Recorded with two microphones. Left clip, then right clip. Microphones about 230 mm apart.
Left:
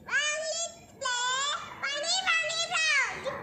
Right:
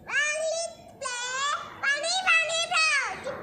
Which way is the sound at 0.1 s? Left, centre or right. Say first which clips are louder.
Right 3 dB; centre.